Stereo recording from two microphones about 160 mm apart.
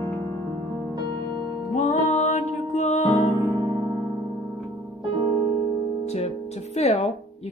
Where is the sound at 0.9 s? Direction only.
30° right (ahead or behind).